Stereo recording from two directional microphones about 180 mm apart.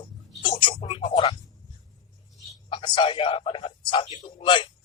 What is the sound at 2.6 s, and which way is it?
A man's voice, 25° left (ahead or behind).